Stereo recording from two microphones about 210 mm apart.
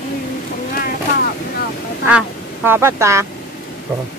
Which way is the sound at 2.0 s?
10° right (ahead or behind).